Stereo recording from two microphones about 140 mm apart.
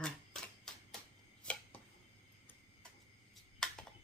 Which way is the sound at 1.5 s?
5° left (ahead or behind).